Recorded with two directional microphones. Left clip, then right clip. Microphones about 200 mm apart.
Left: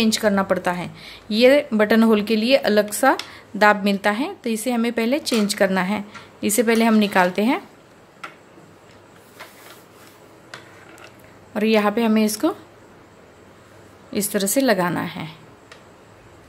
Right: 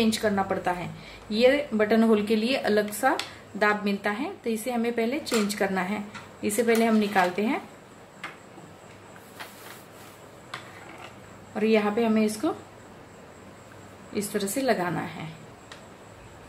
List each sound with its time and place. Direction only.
0.0 s speech: 45° left (ahead or behind)
11.5 s speech: 50° left (ahead or behind)
14.1 s speech: 50° left (ahead or behind)